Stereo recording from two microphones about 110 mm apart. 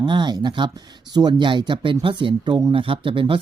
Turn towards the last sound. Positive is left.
turn(degrees=-50)  # may be behind; listen again after turning